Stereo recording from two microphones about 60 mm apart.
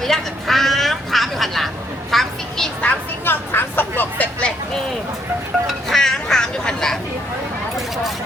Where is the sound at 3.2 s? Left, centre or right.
Left.